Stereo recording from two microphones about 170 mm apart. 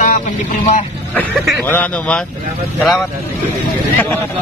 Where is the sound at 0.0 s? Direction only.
50° left (ahead or behind).